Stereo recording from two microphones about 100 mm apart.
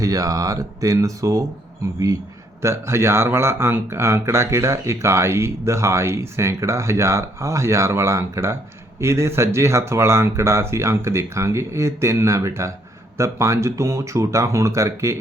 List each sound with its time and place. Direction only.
0.0 s speech: 35° right (ahead or behind)
2.6 s speech: 25° right (ahead or behind)